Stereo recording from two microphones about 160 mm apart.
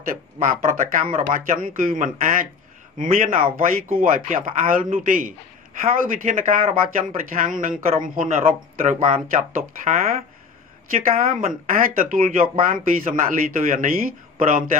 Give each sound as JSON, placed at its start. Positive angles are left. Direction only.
{"t": 0.4, "sound": "speech", "side_deg": -50}
{"t": 11.1, "sound": "speech", "side_deg": -55}